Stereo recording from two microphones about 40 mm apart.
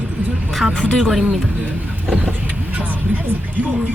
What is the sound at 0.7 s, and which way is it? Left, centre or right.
Speech, left.